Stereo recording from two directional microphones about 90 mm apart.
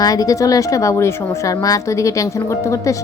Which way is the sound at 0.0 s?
45° left (ahead or behind).